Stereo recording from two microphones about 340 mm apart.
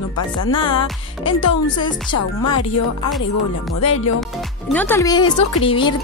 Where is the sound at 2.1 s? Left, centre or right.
Left.